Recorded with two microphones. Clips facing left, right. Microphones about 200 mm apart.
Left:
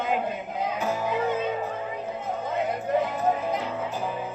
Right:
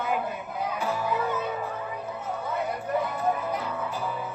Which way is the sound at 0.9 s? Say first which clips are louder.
Left 2 dB; 20° left (ahead or behind).